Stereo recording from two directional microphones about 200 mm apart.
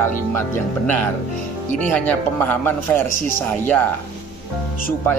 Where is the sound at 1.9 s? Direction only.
10° left (ahead or behind).